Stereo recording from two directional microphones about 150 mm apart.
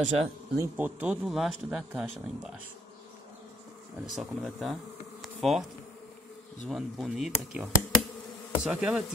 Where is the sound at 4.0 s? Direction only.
Centre (ahead or behind).